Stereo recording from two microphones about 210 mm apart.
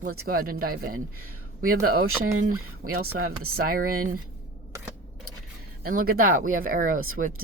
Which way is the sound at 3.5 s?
45° right (ahead or behind).